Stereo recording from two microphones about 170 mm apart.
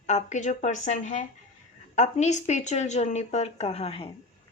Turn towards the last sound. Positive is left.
turn(degrees=35)  # may be behind; listen again after turning